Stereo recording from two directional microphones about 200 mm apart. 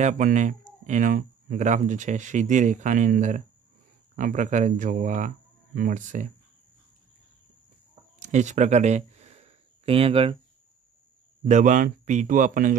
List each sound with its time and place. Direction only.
0.0 s speech: 40° right (ahead or behind)
8.2 s a sound: 35° right (ahead or behind)
11.4 s speech: 40° right (ahead or behind)